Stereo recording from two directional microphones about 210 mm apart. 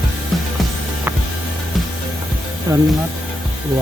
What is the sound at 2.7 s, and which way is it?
Speech, 20° right (ahead or behind).